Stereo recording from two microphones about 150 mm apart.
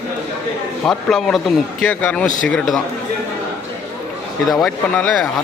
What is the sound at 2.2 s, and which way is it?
Speech, 55° left (ahead or behind).